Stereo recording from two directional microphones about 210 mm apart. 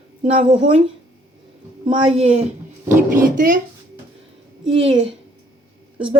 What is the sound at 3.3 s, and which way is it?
Speech, 40° right (ahead or behind).